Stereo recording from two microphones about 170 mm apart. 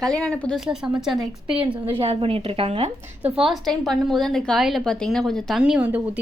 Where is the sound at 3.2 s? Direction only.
Centre (ahead or behind).